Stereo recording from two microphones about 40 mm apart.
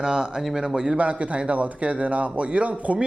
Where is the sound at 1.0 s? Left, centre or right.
Right.